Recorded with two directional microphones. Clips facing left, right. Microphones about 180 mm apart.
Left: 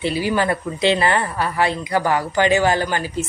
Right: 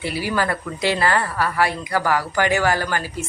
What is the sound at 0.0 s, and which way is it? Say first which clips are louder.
Speech: left 3 dB; 20° left (ahead or behind).